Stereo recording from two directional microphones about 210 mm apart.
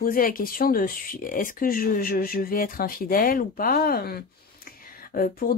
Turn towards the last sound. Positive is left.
turn(degrees=45)  # may be behind; listen again after turning